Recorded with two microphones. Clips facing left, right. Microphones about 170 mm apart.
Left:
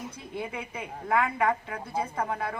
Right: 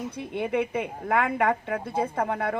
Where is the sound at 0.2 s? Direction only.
65° right (ahead or behind).